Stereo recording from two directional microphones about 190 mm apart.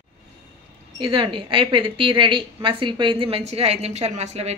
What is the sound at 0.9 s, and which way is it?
A woman's voice, 25° right (ahead or behind).